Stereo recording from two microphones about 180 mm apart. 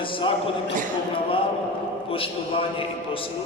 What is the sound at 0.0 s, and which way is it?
Speech, 30° left (ahead or behind).